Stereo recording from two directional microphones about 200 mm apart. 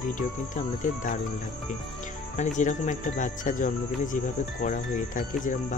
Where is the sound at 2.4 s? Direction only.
40° left (ahead or behind).